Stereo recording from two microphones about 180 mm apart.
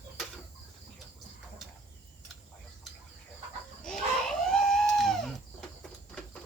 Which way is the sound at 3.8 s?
5° left (ahead or behind).